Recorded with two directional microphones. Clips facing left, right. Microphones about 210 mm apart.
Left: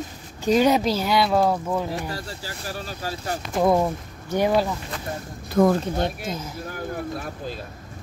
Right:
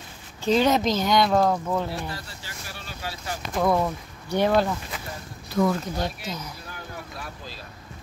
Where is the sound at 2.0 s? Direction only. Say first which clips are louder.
Left 4 dB; 40° left (ahead or behind).